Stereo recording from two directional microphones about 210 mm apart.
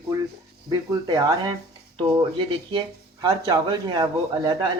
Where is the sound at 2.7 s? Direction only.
20° right (ahead or behind).